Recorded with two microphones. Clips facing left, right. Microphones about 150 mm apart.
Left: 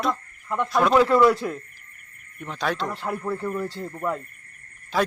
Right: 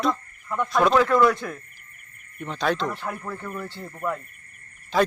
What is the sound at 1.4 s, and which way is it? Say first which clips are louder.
Speech: left 4 dB; 20° left (ahead or behind).